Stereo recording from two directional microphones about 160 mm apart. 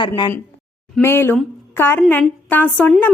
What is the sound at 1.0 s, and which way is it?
A woman's voice, 15° left (ahead or behind).